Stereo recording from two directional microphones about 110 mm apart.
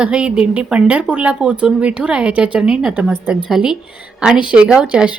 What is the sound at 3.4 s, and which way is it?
A woman's voice, 5° right (ahead or behind).